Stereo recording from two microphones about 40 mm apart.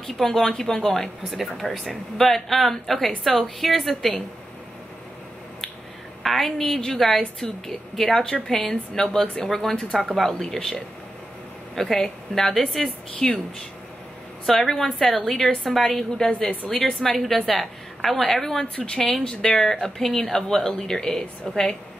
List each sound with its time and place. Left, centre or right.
0.0 s speech: centre
1.3 s speech: centre
6.2 s a woman's voice: centre
6.7 s speech: centre
9.6 s speech: left
10.1 s a woman's voice: centre
12.8 s speech: centre
14.4 s speech: centre
16.4 s speech: left
17.0 s speech: centre